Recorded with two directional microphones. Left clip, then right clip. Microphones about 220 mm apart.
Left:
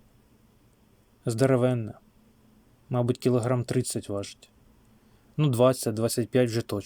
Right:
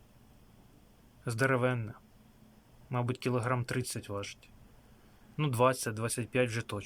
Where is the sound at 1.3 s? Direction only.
20° left (ahead or behind).